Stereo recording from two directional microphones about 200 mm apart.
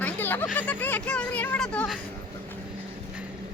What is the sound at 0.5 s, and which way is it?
Speech, 10° left (ahead or behind).